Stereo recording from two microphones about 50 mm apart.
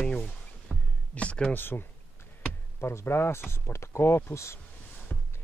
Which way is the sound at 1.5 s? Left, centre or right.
Left.